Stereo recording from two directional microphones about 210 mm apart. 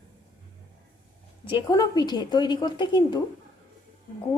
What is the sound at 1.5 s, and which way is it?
A woman's voice, 20° left (ahead or behind).